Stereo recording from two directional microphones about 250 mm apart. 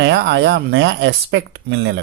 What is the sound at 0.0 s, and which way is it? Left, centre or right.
Speech, right.